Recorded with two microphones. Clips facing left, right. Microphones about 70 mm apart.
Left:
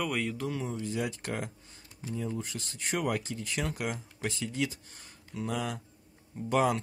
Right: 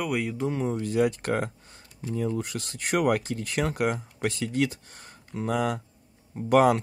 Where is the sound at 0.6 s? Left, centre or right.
Right.